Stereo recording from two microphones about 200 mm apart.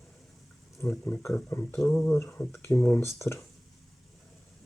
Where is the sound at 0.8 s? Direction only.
10° left (ahead or behind).